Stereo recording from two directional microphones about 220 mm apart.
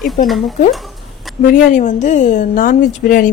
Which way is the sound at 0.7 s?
Centre (ahead or behind).